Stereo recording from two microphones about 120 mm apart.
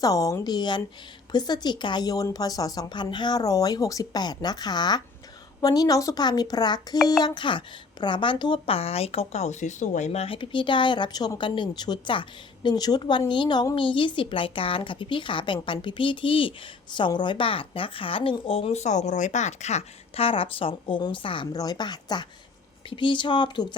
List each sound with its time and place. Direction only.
0.0 s a woman's voice: 30° left (ahead or behind); by 21.4 s 45° left (ahead or behind)
21.5 s a woman's voice: 30° left (ahead or behind)